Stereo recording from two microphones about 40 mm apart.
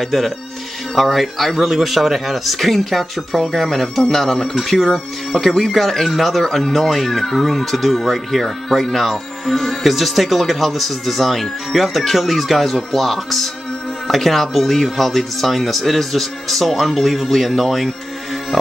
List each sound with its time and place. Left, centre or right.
0.0 s speech: centre